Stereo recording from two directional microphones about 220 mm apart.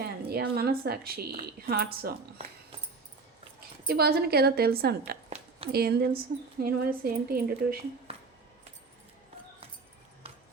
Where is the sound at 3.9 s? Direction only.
45° right (ahead or behind).